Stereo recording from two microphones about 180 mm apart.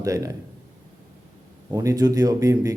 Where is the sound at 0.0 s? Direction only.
20° right (ahead or behind).